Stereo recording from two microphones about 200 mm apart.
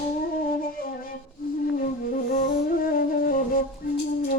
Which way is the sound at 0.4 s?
45° left (ahead or behind).